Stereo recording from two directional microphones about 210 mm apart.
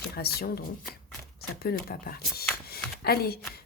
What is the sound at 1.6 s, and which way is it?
Speech, 45° left (ahead or behind).